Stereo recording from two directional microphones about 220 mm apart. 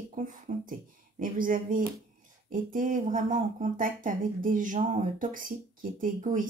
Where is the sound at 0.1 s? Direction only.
35° right (ahead or behind).